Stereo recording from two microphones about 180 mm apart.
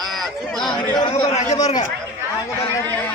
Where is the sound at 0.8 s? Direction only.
30° left (ahead or behind).